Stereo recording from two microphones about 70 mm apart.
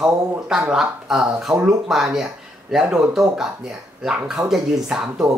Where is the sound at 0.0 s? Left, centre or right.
Centre.